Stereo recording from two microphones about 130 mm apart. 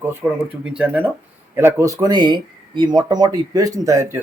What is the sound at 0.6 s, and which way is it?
Speech, 10° right (ahead or behind).